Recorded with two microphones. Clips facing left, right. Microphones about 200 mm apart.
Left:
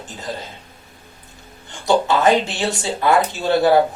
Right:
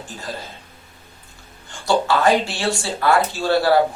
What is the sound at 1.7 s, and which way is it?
Speech, 20° left (ahead or behind).